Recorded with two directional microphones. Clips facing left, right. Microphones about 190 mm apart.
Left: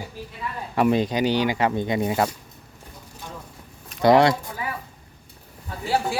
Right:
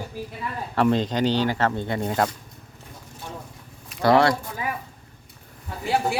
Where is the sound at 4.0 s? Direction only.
20° left (ahead or behind).